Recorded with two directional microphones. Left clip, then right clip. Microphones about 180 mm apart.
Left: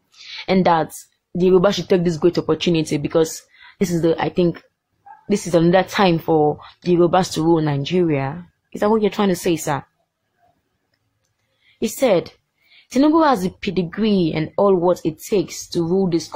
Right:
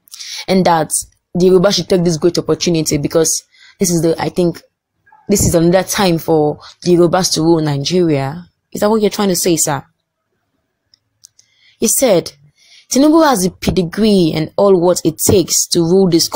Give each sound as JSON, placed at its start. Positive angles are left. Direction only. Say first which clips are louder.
{"t": 0.2, "sound": "a sound", "louder": "right 4 dB", "side_deg": -20}
{"t": 1.4, "sound": "a woman's voice", "louder": "right 5 dB", "side_deg": -15}
{"t": 11.8, "sound": "a woman's voice", "louder": "right 5 dB", "side_deg": -20}